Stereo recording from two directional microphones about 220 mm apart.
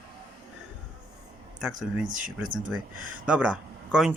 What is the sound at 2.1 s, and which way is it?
Speech, 35° right (ahead or behind).